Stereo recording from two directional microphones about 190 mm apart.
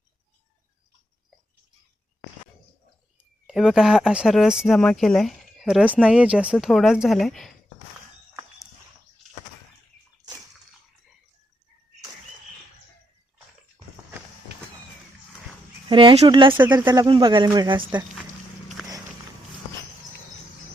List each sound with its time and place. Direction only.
3.2 s speech: 5° right (ahead or behind)
15.9 s speech: 25° right (ahead or behind)